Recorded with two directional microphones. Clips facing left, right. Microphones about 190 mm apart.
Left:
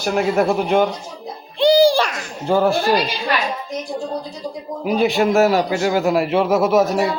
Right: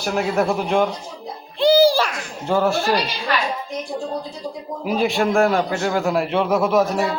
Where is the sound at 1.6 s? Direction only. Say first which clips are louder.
Left 1 dB; 5° right (ahead or behind).